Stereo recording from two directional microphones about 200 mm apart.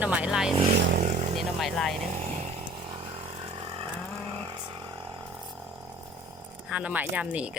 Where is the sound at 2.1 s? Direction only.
35° right (ahead or behind).